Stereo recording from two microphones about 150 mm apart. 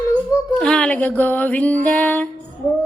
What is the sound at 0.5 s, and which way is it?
Music, 5° left (ahead or behind).